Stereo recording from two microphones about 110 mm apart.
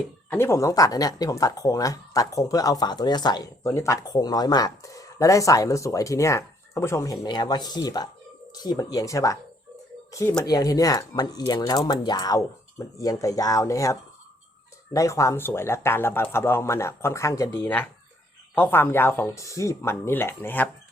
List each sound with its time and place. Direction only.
0.3 s speech: 20° left (ahead or behind); by 3.5 s 40° left (ahead or behind)
3.6 s speech: 25° left (ahead or behind)
14.9 s speech: 30° left (ahead or behind)
17.6 s speech: 15° left (ahead or behind)